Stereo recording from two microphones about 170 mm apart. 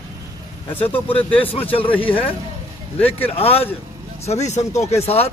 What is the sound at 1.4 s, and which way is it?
Speech, 30° left (ahead or behind).